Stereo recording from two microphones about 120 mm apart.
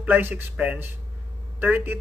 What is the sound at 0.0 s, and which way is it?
A man's voice, 15° right (ahead or behind).